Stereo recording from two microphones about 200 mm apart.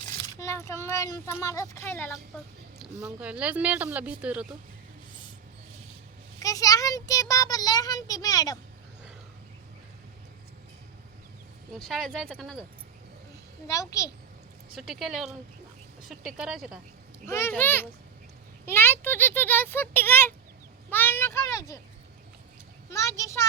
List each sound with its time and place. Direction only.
0.3 s a child's voice: 15° left (ahead or behind)
3.0 s speech: 5° right (ahead or behind)
6.4 s a child's voice: 15° left (ahead or behind)
11.7 s speech: centre (ahead or behind)
13.7 s a child's voice: 15° left (ahead or behind)
14.8 s speech: centre (ahead or behind)
17.2 s a child's voice: 15° left (ahead or behind)
22.9 s a child's voice: 15° left (ahead or behind)